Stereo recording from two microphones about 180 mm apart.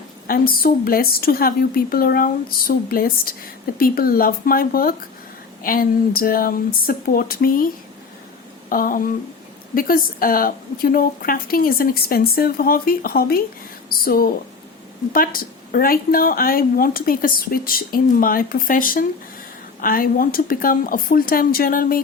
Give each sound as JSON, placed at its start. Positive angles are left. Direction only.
{"t": 0.3, "sound": "a woman's voice", "side_deg": 55}
{"t": 8.7, "sound": "speech", "side_deg": 50}